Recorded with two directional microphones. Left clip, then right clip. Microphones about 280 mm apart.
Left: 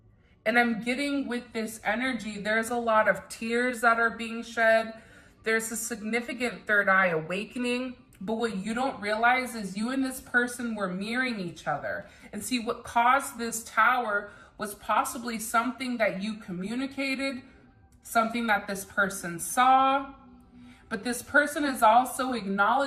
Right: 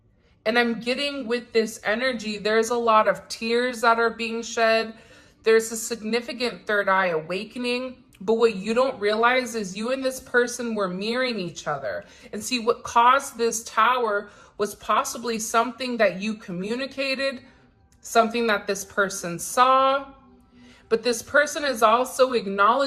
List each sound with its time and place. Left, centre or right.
0.4 s speech: centre
8.3 s speech: right
11.3 s speech: centre
11.6 s speech: centre